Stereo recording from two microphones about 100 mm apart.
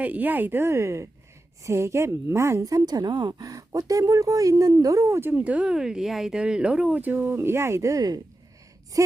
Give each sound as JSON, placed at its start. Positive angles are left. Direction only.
{"t": 0.0, "sound": "a woman's voice", "side_deg": -15}